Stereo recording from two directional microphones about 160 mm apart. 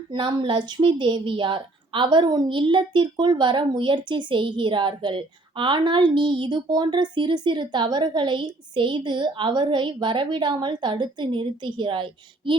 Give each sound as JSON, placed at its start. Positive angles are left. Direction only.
{"t": 0.1, "sound": "a woman's voice", "side_deg": -30}